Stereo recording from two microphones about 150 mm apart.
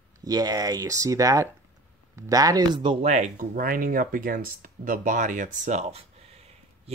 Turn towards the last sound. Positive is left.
turn(degrees=-45)  # may be behind; listen again after turning